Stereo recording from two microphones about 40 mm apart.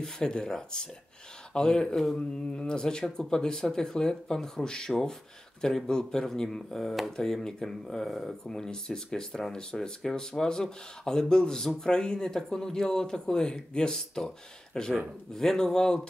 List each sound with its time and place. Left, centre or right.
0.0 s speech: centre
8.5 s speech: centre